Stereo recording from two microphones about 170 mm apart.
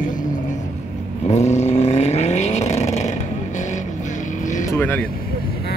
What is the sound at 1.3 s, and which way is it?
Vehicle, 40° left (ahead or behind).